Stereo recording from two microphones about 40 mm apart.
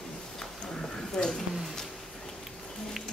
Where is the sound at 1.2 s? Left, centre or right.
Left.